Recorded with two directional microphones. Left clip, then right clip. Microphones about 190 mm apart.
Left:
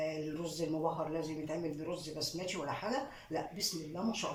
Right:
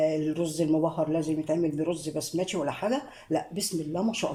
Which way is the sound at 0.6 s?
55° right (ahead or behind).